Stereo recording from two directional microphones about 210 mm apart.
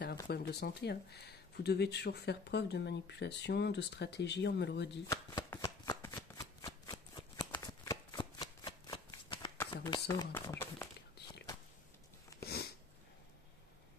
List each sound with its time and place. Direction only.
0.3 s speech: 50° left (ahead or behind)
5.0 s shuffling cards: 15° left (ahead or behind)
10.0 s speech: 15° left (ahead or behind)
12.4 s sniff: 50° left (ahead or behind)